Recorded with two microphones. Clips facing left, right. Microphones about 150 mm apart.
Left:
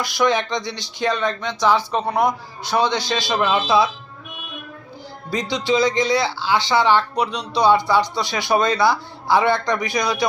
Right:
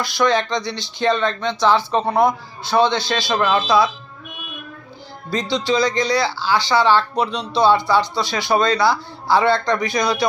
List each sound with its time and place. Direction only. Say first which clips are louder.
0.0 s speech: right 1 dB; 15° left (ahead or behind)
5.5 s speech: even; 20° left (ahead or behind)